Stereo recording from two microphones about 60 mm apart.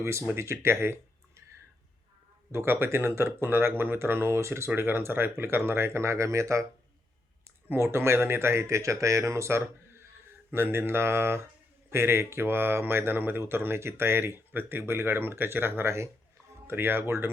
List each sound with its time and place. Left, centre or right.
0.0 s speech: right
2.5 s speech: right
7.8 s speech: right
8.6 s speech: right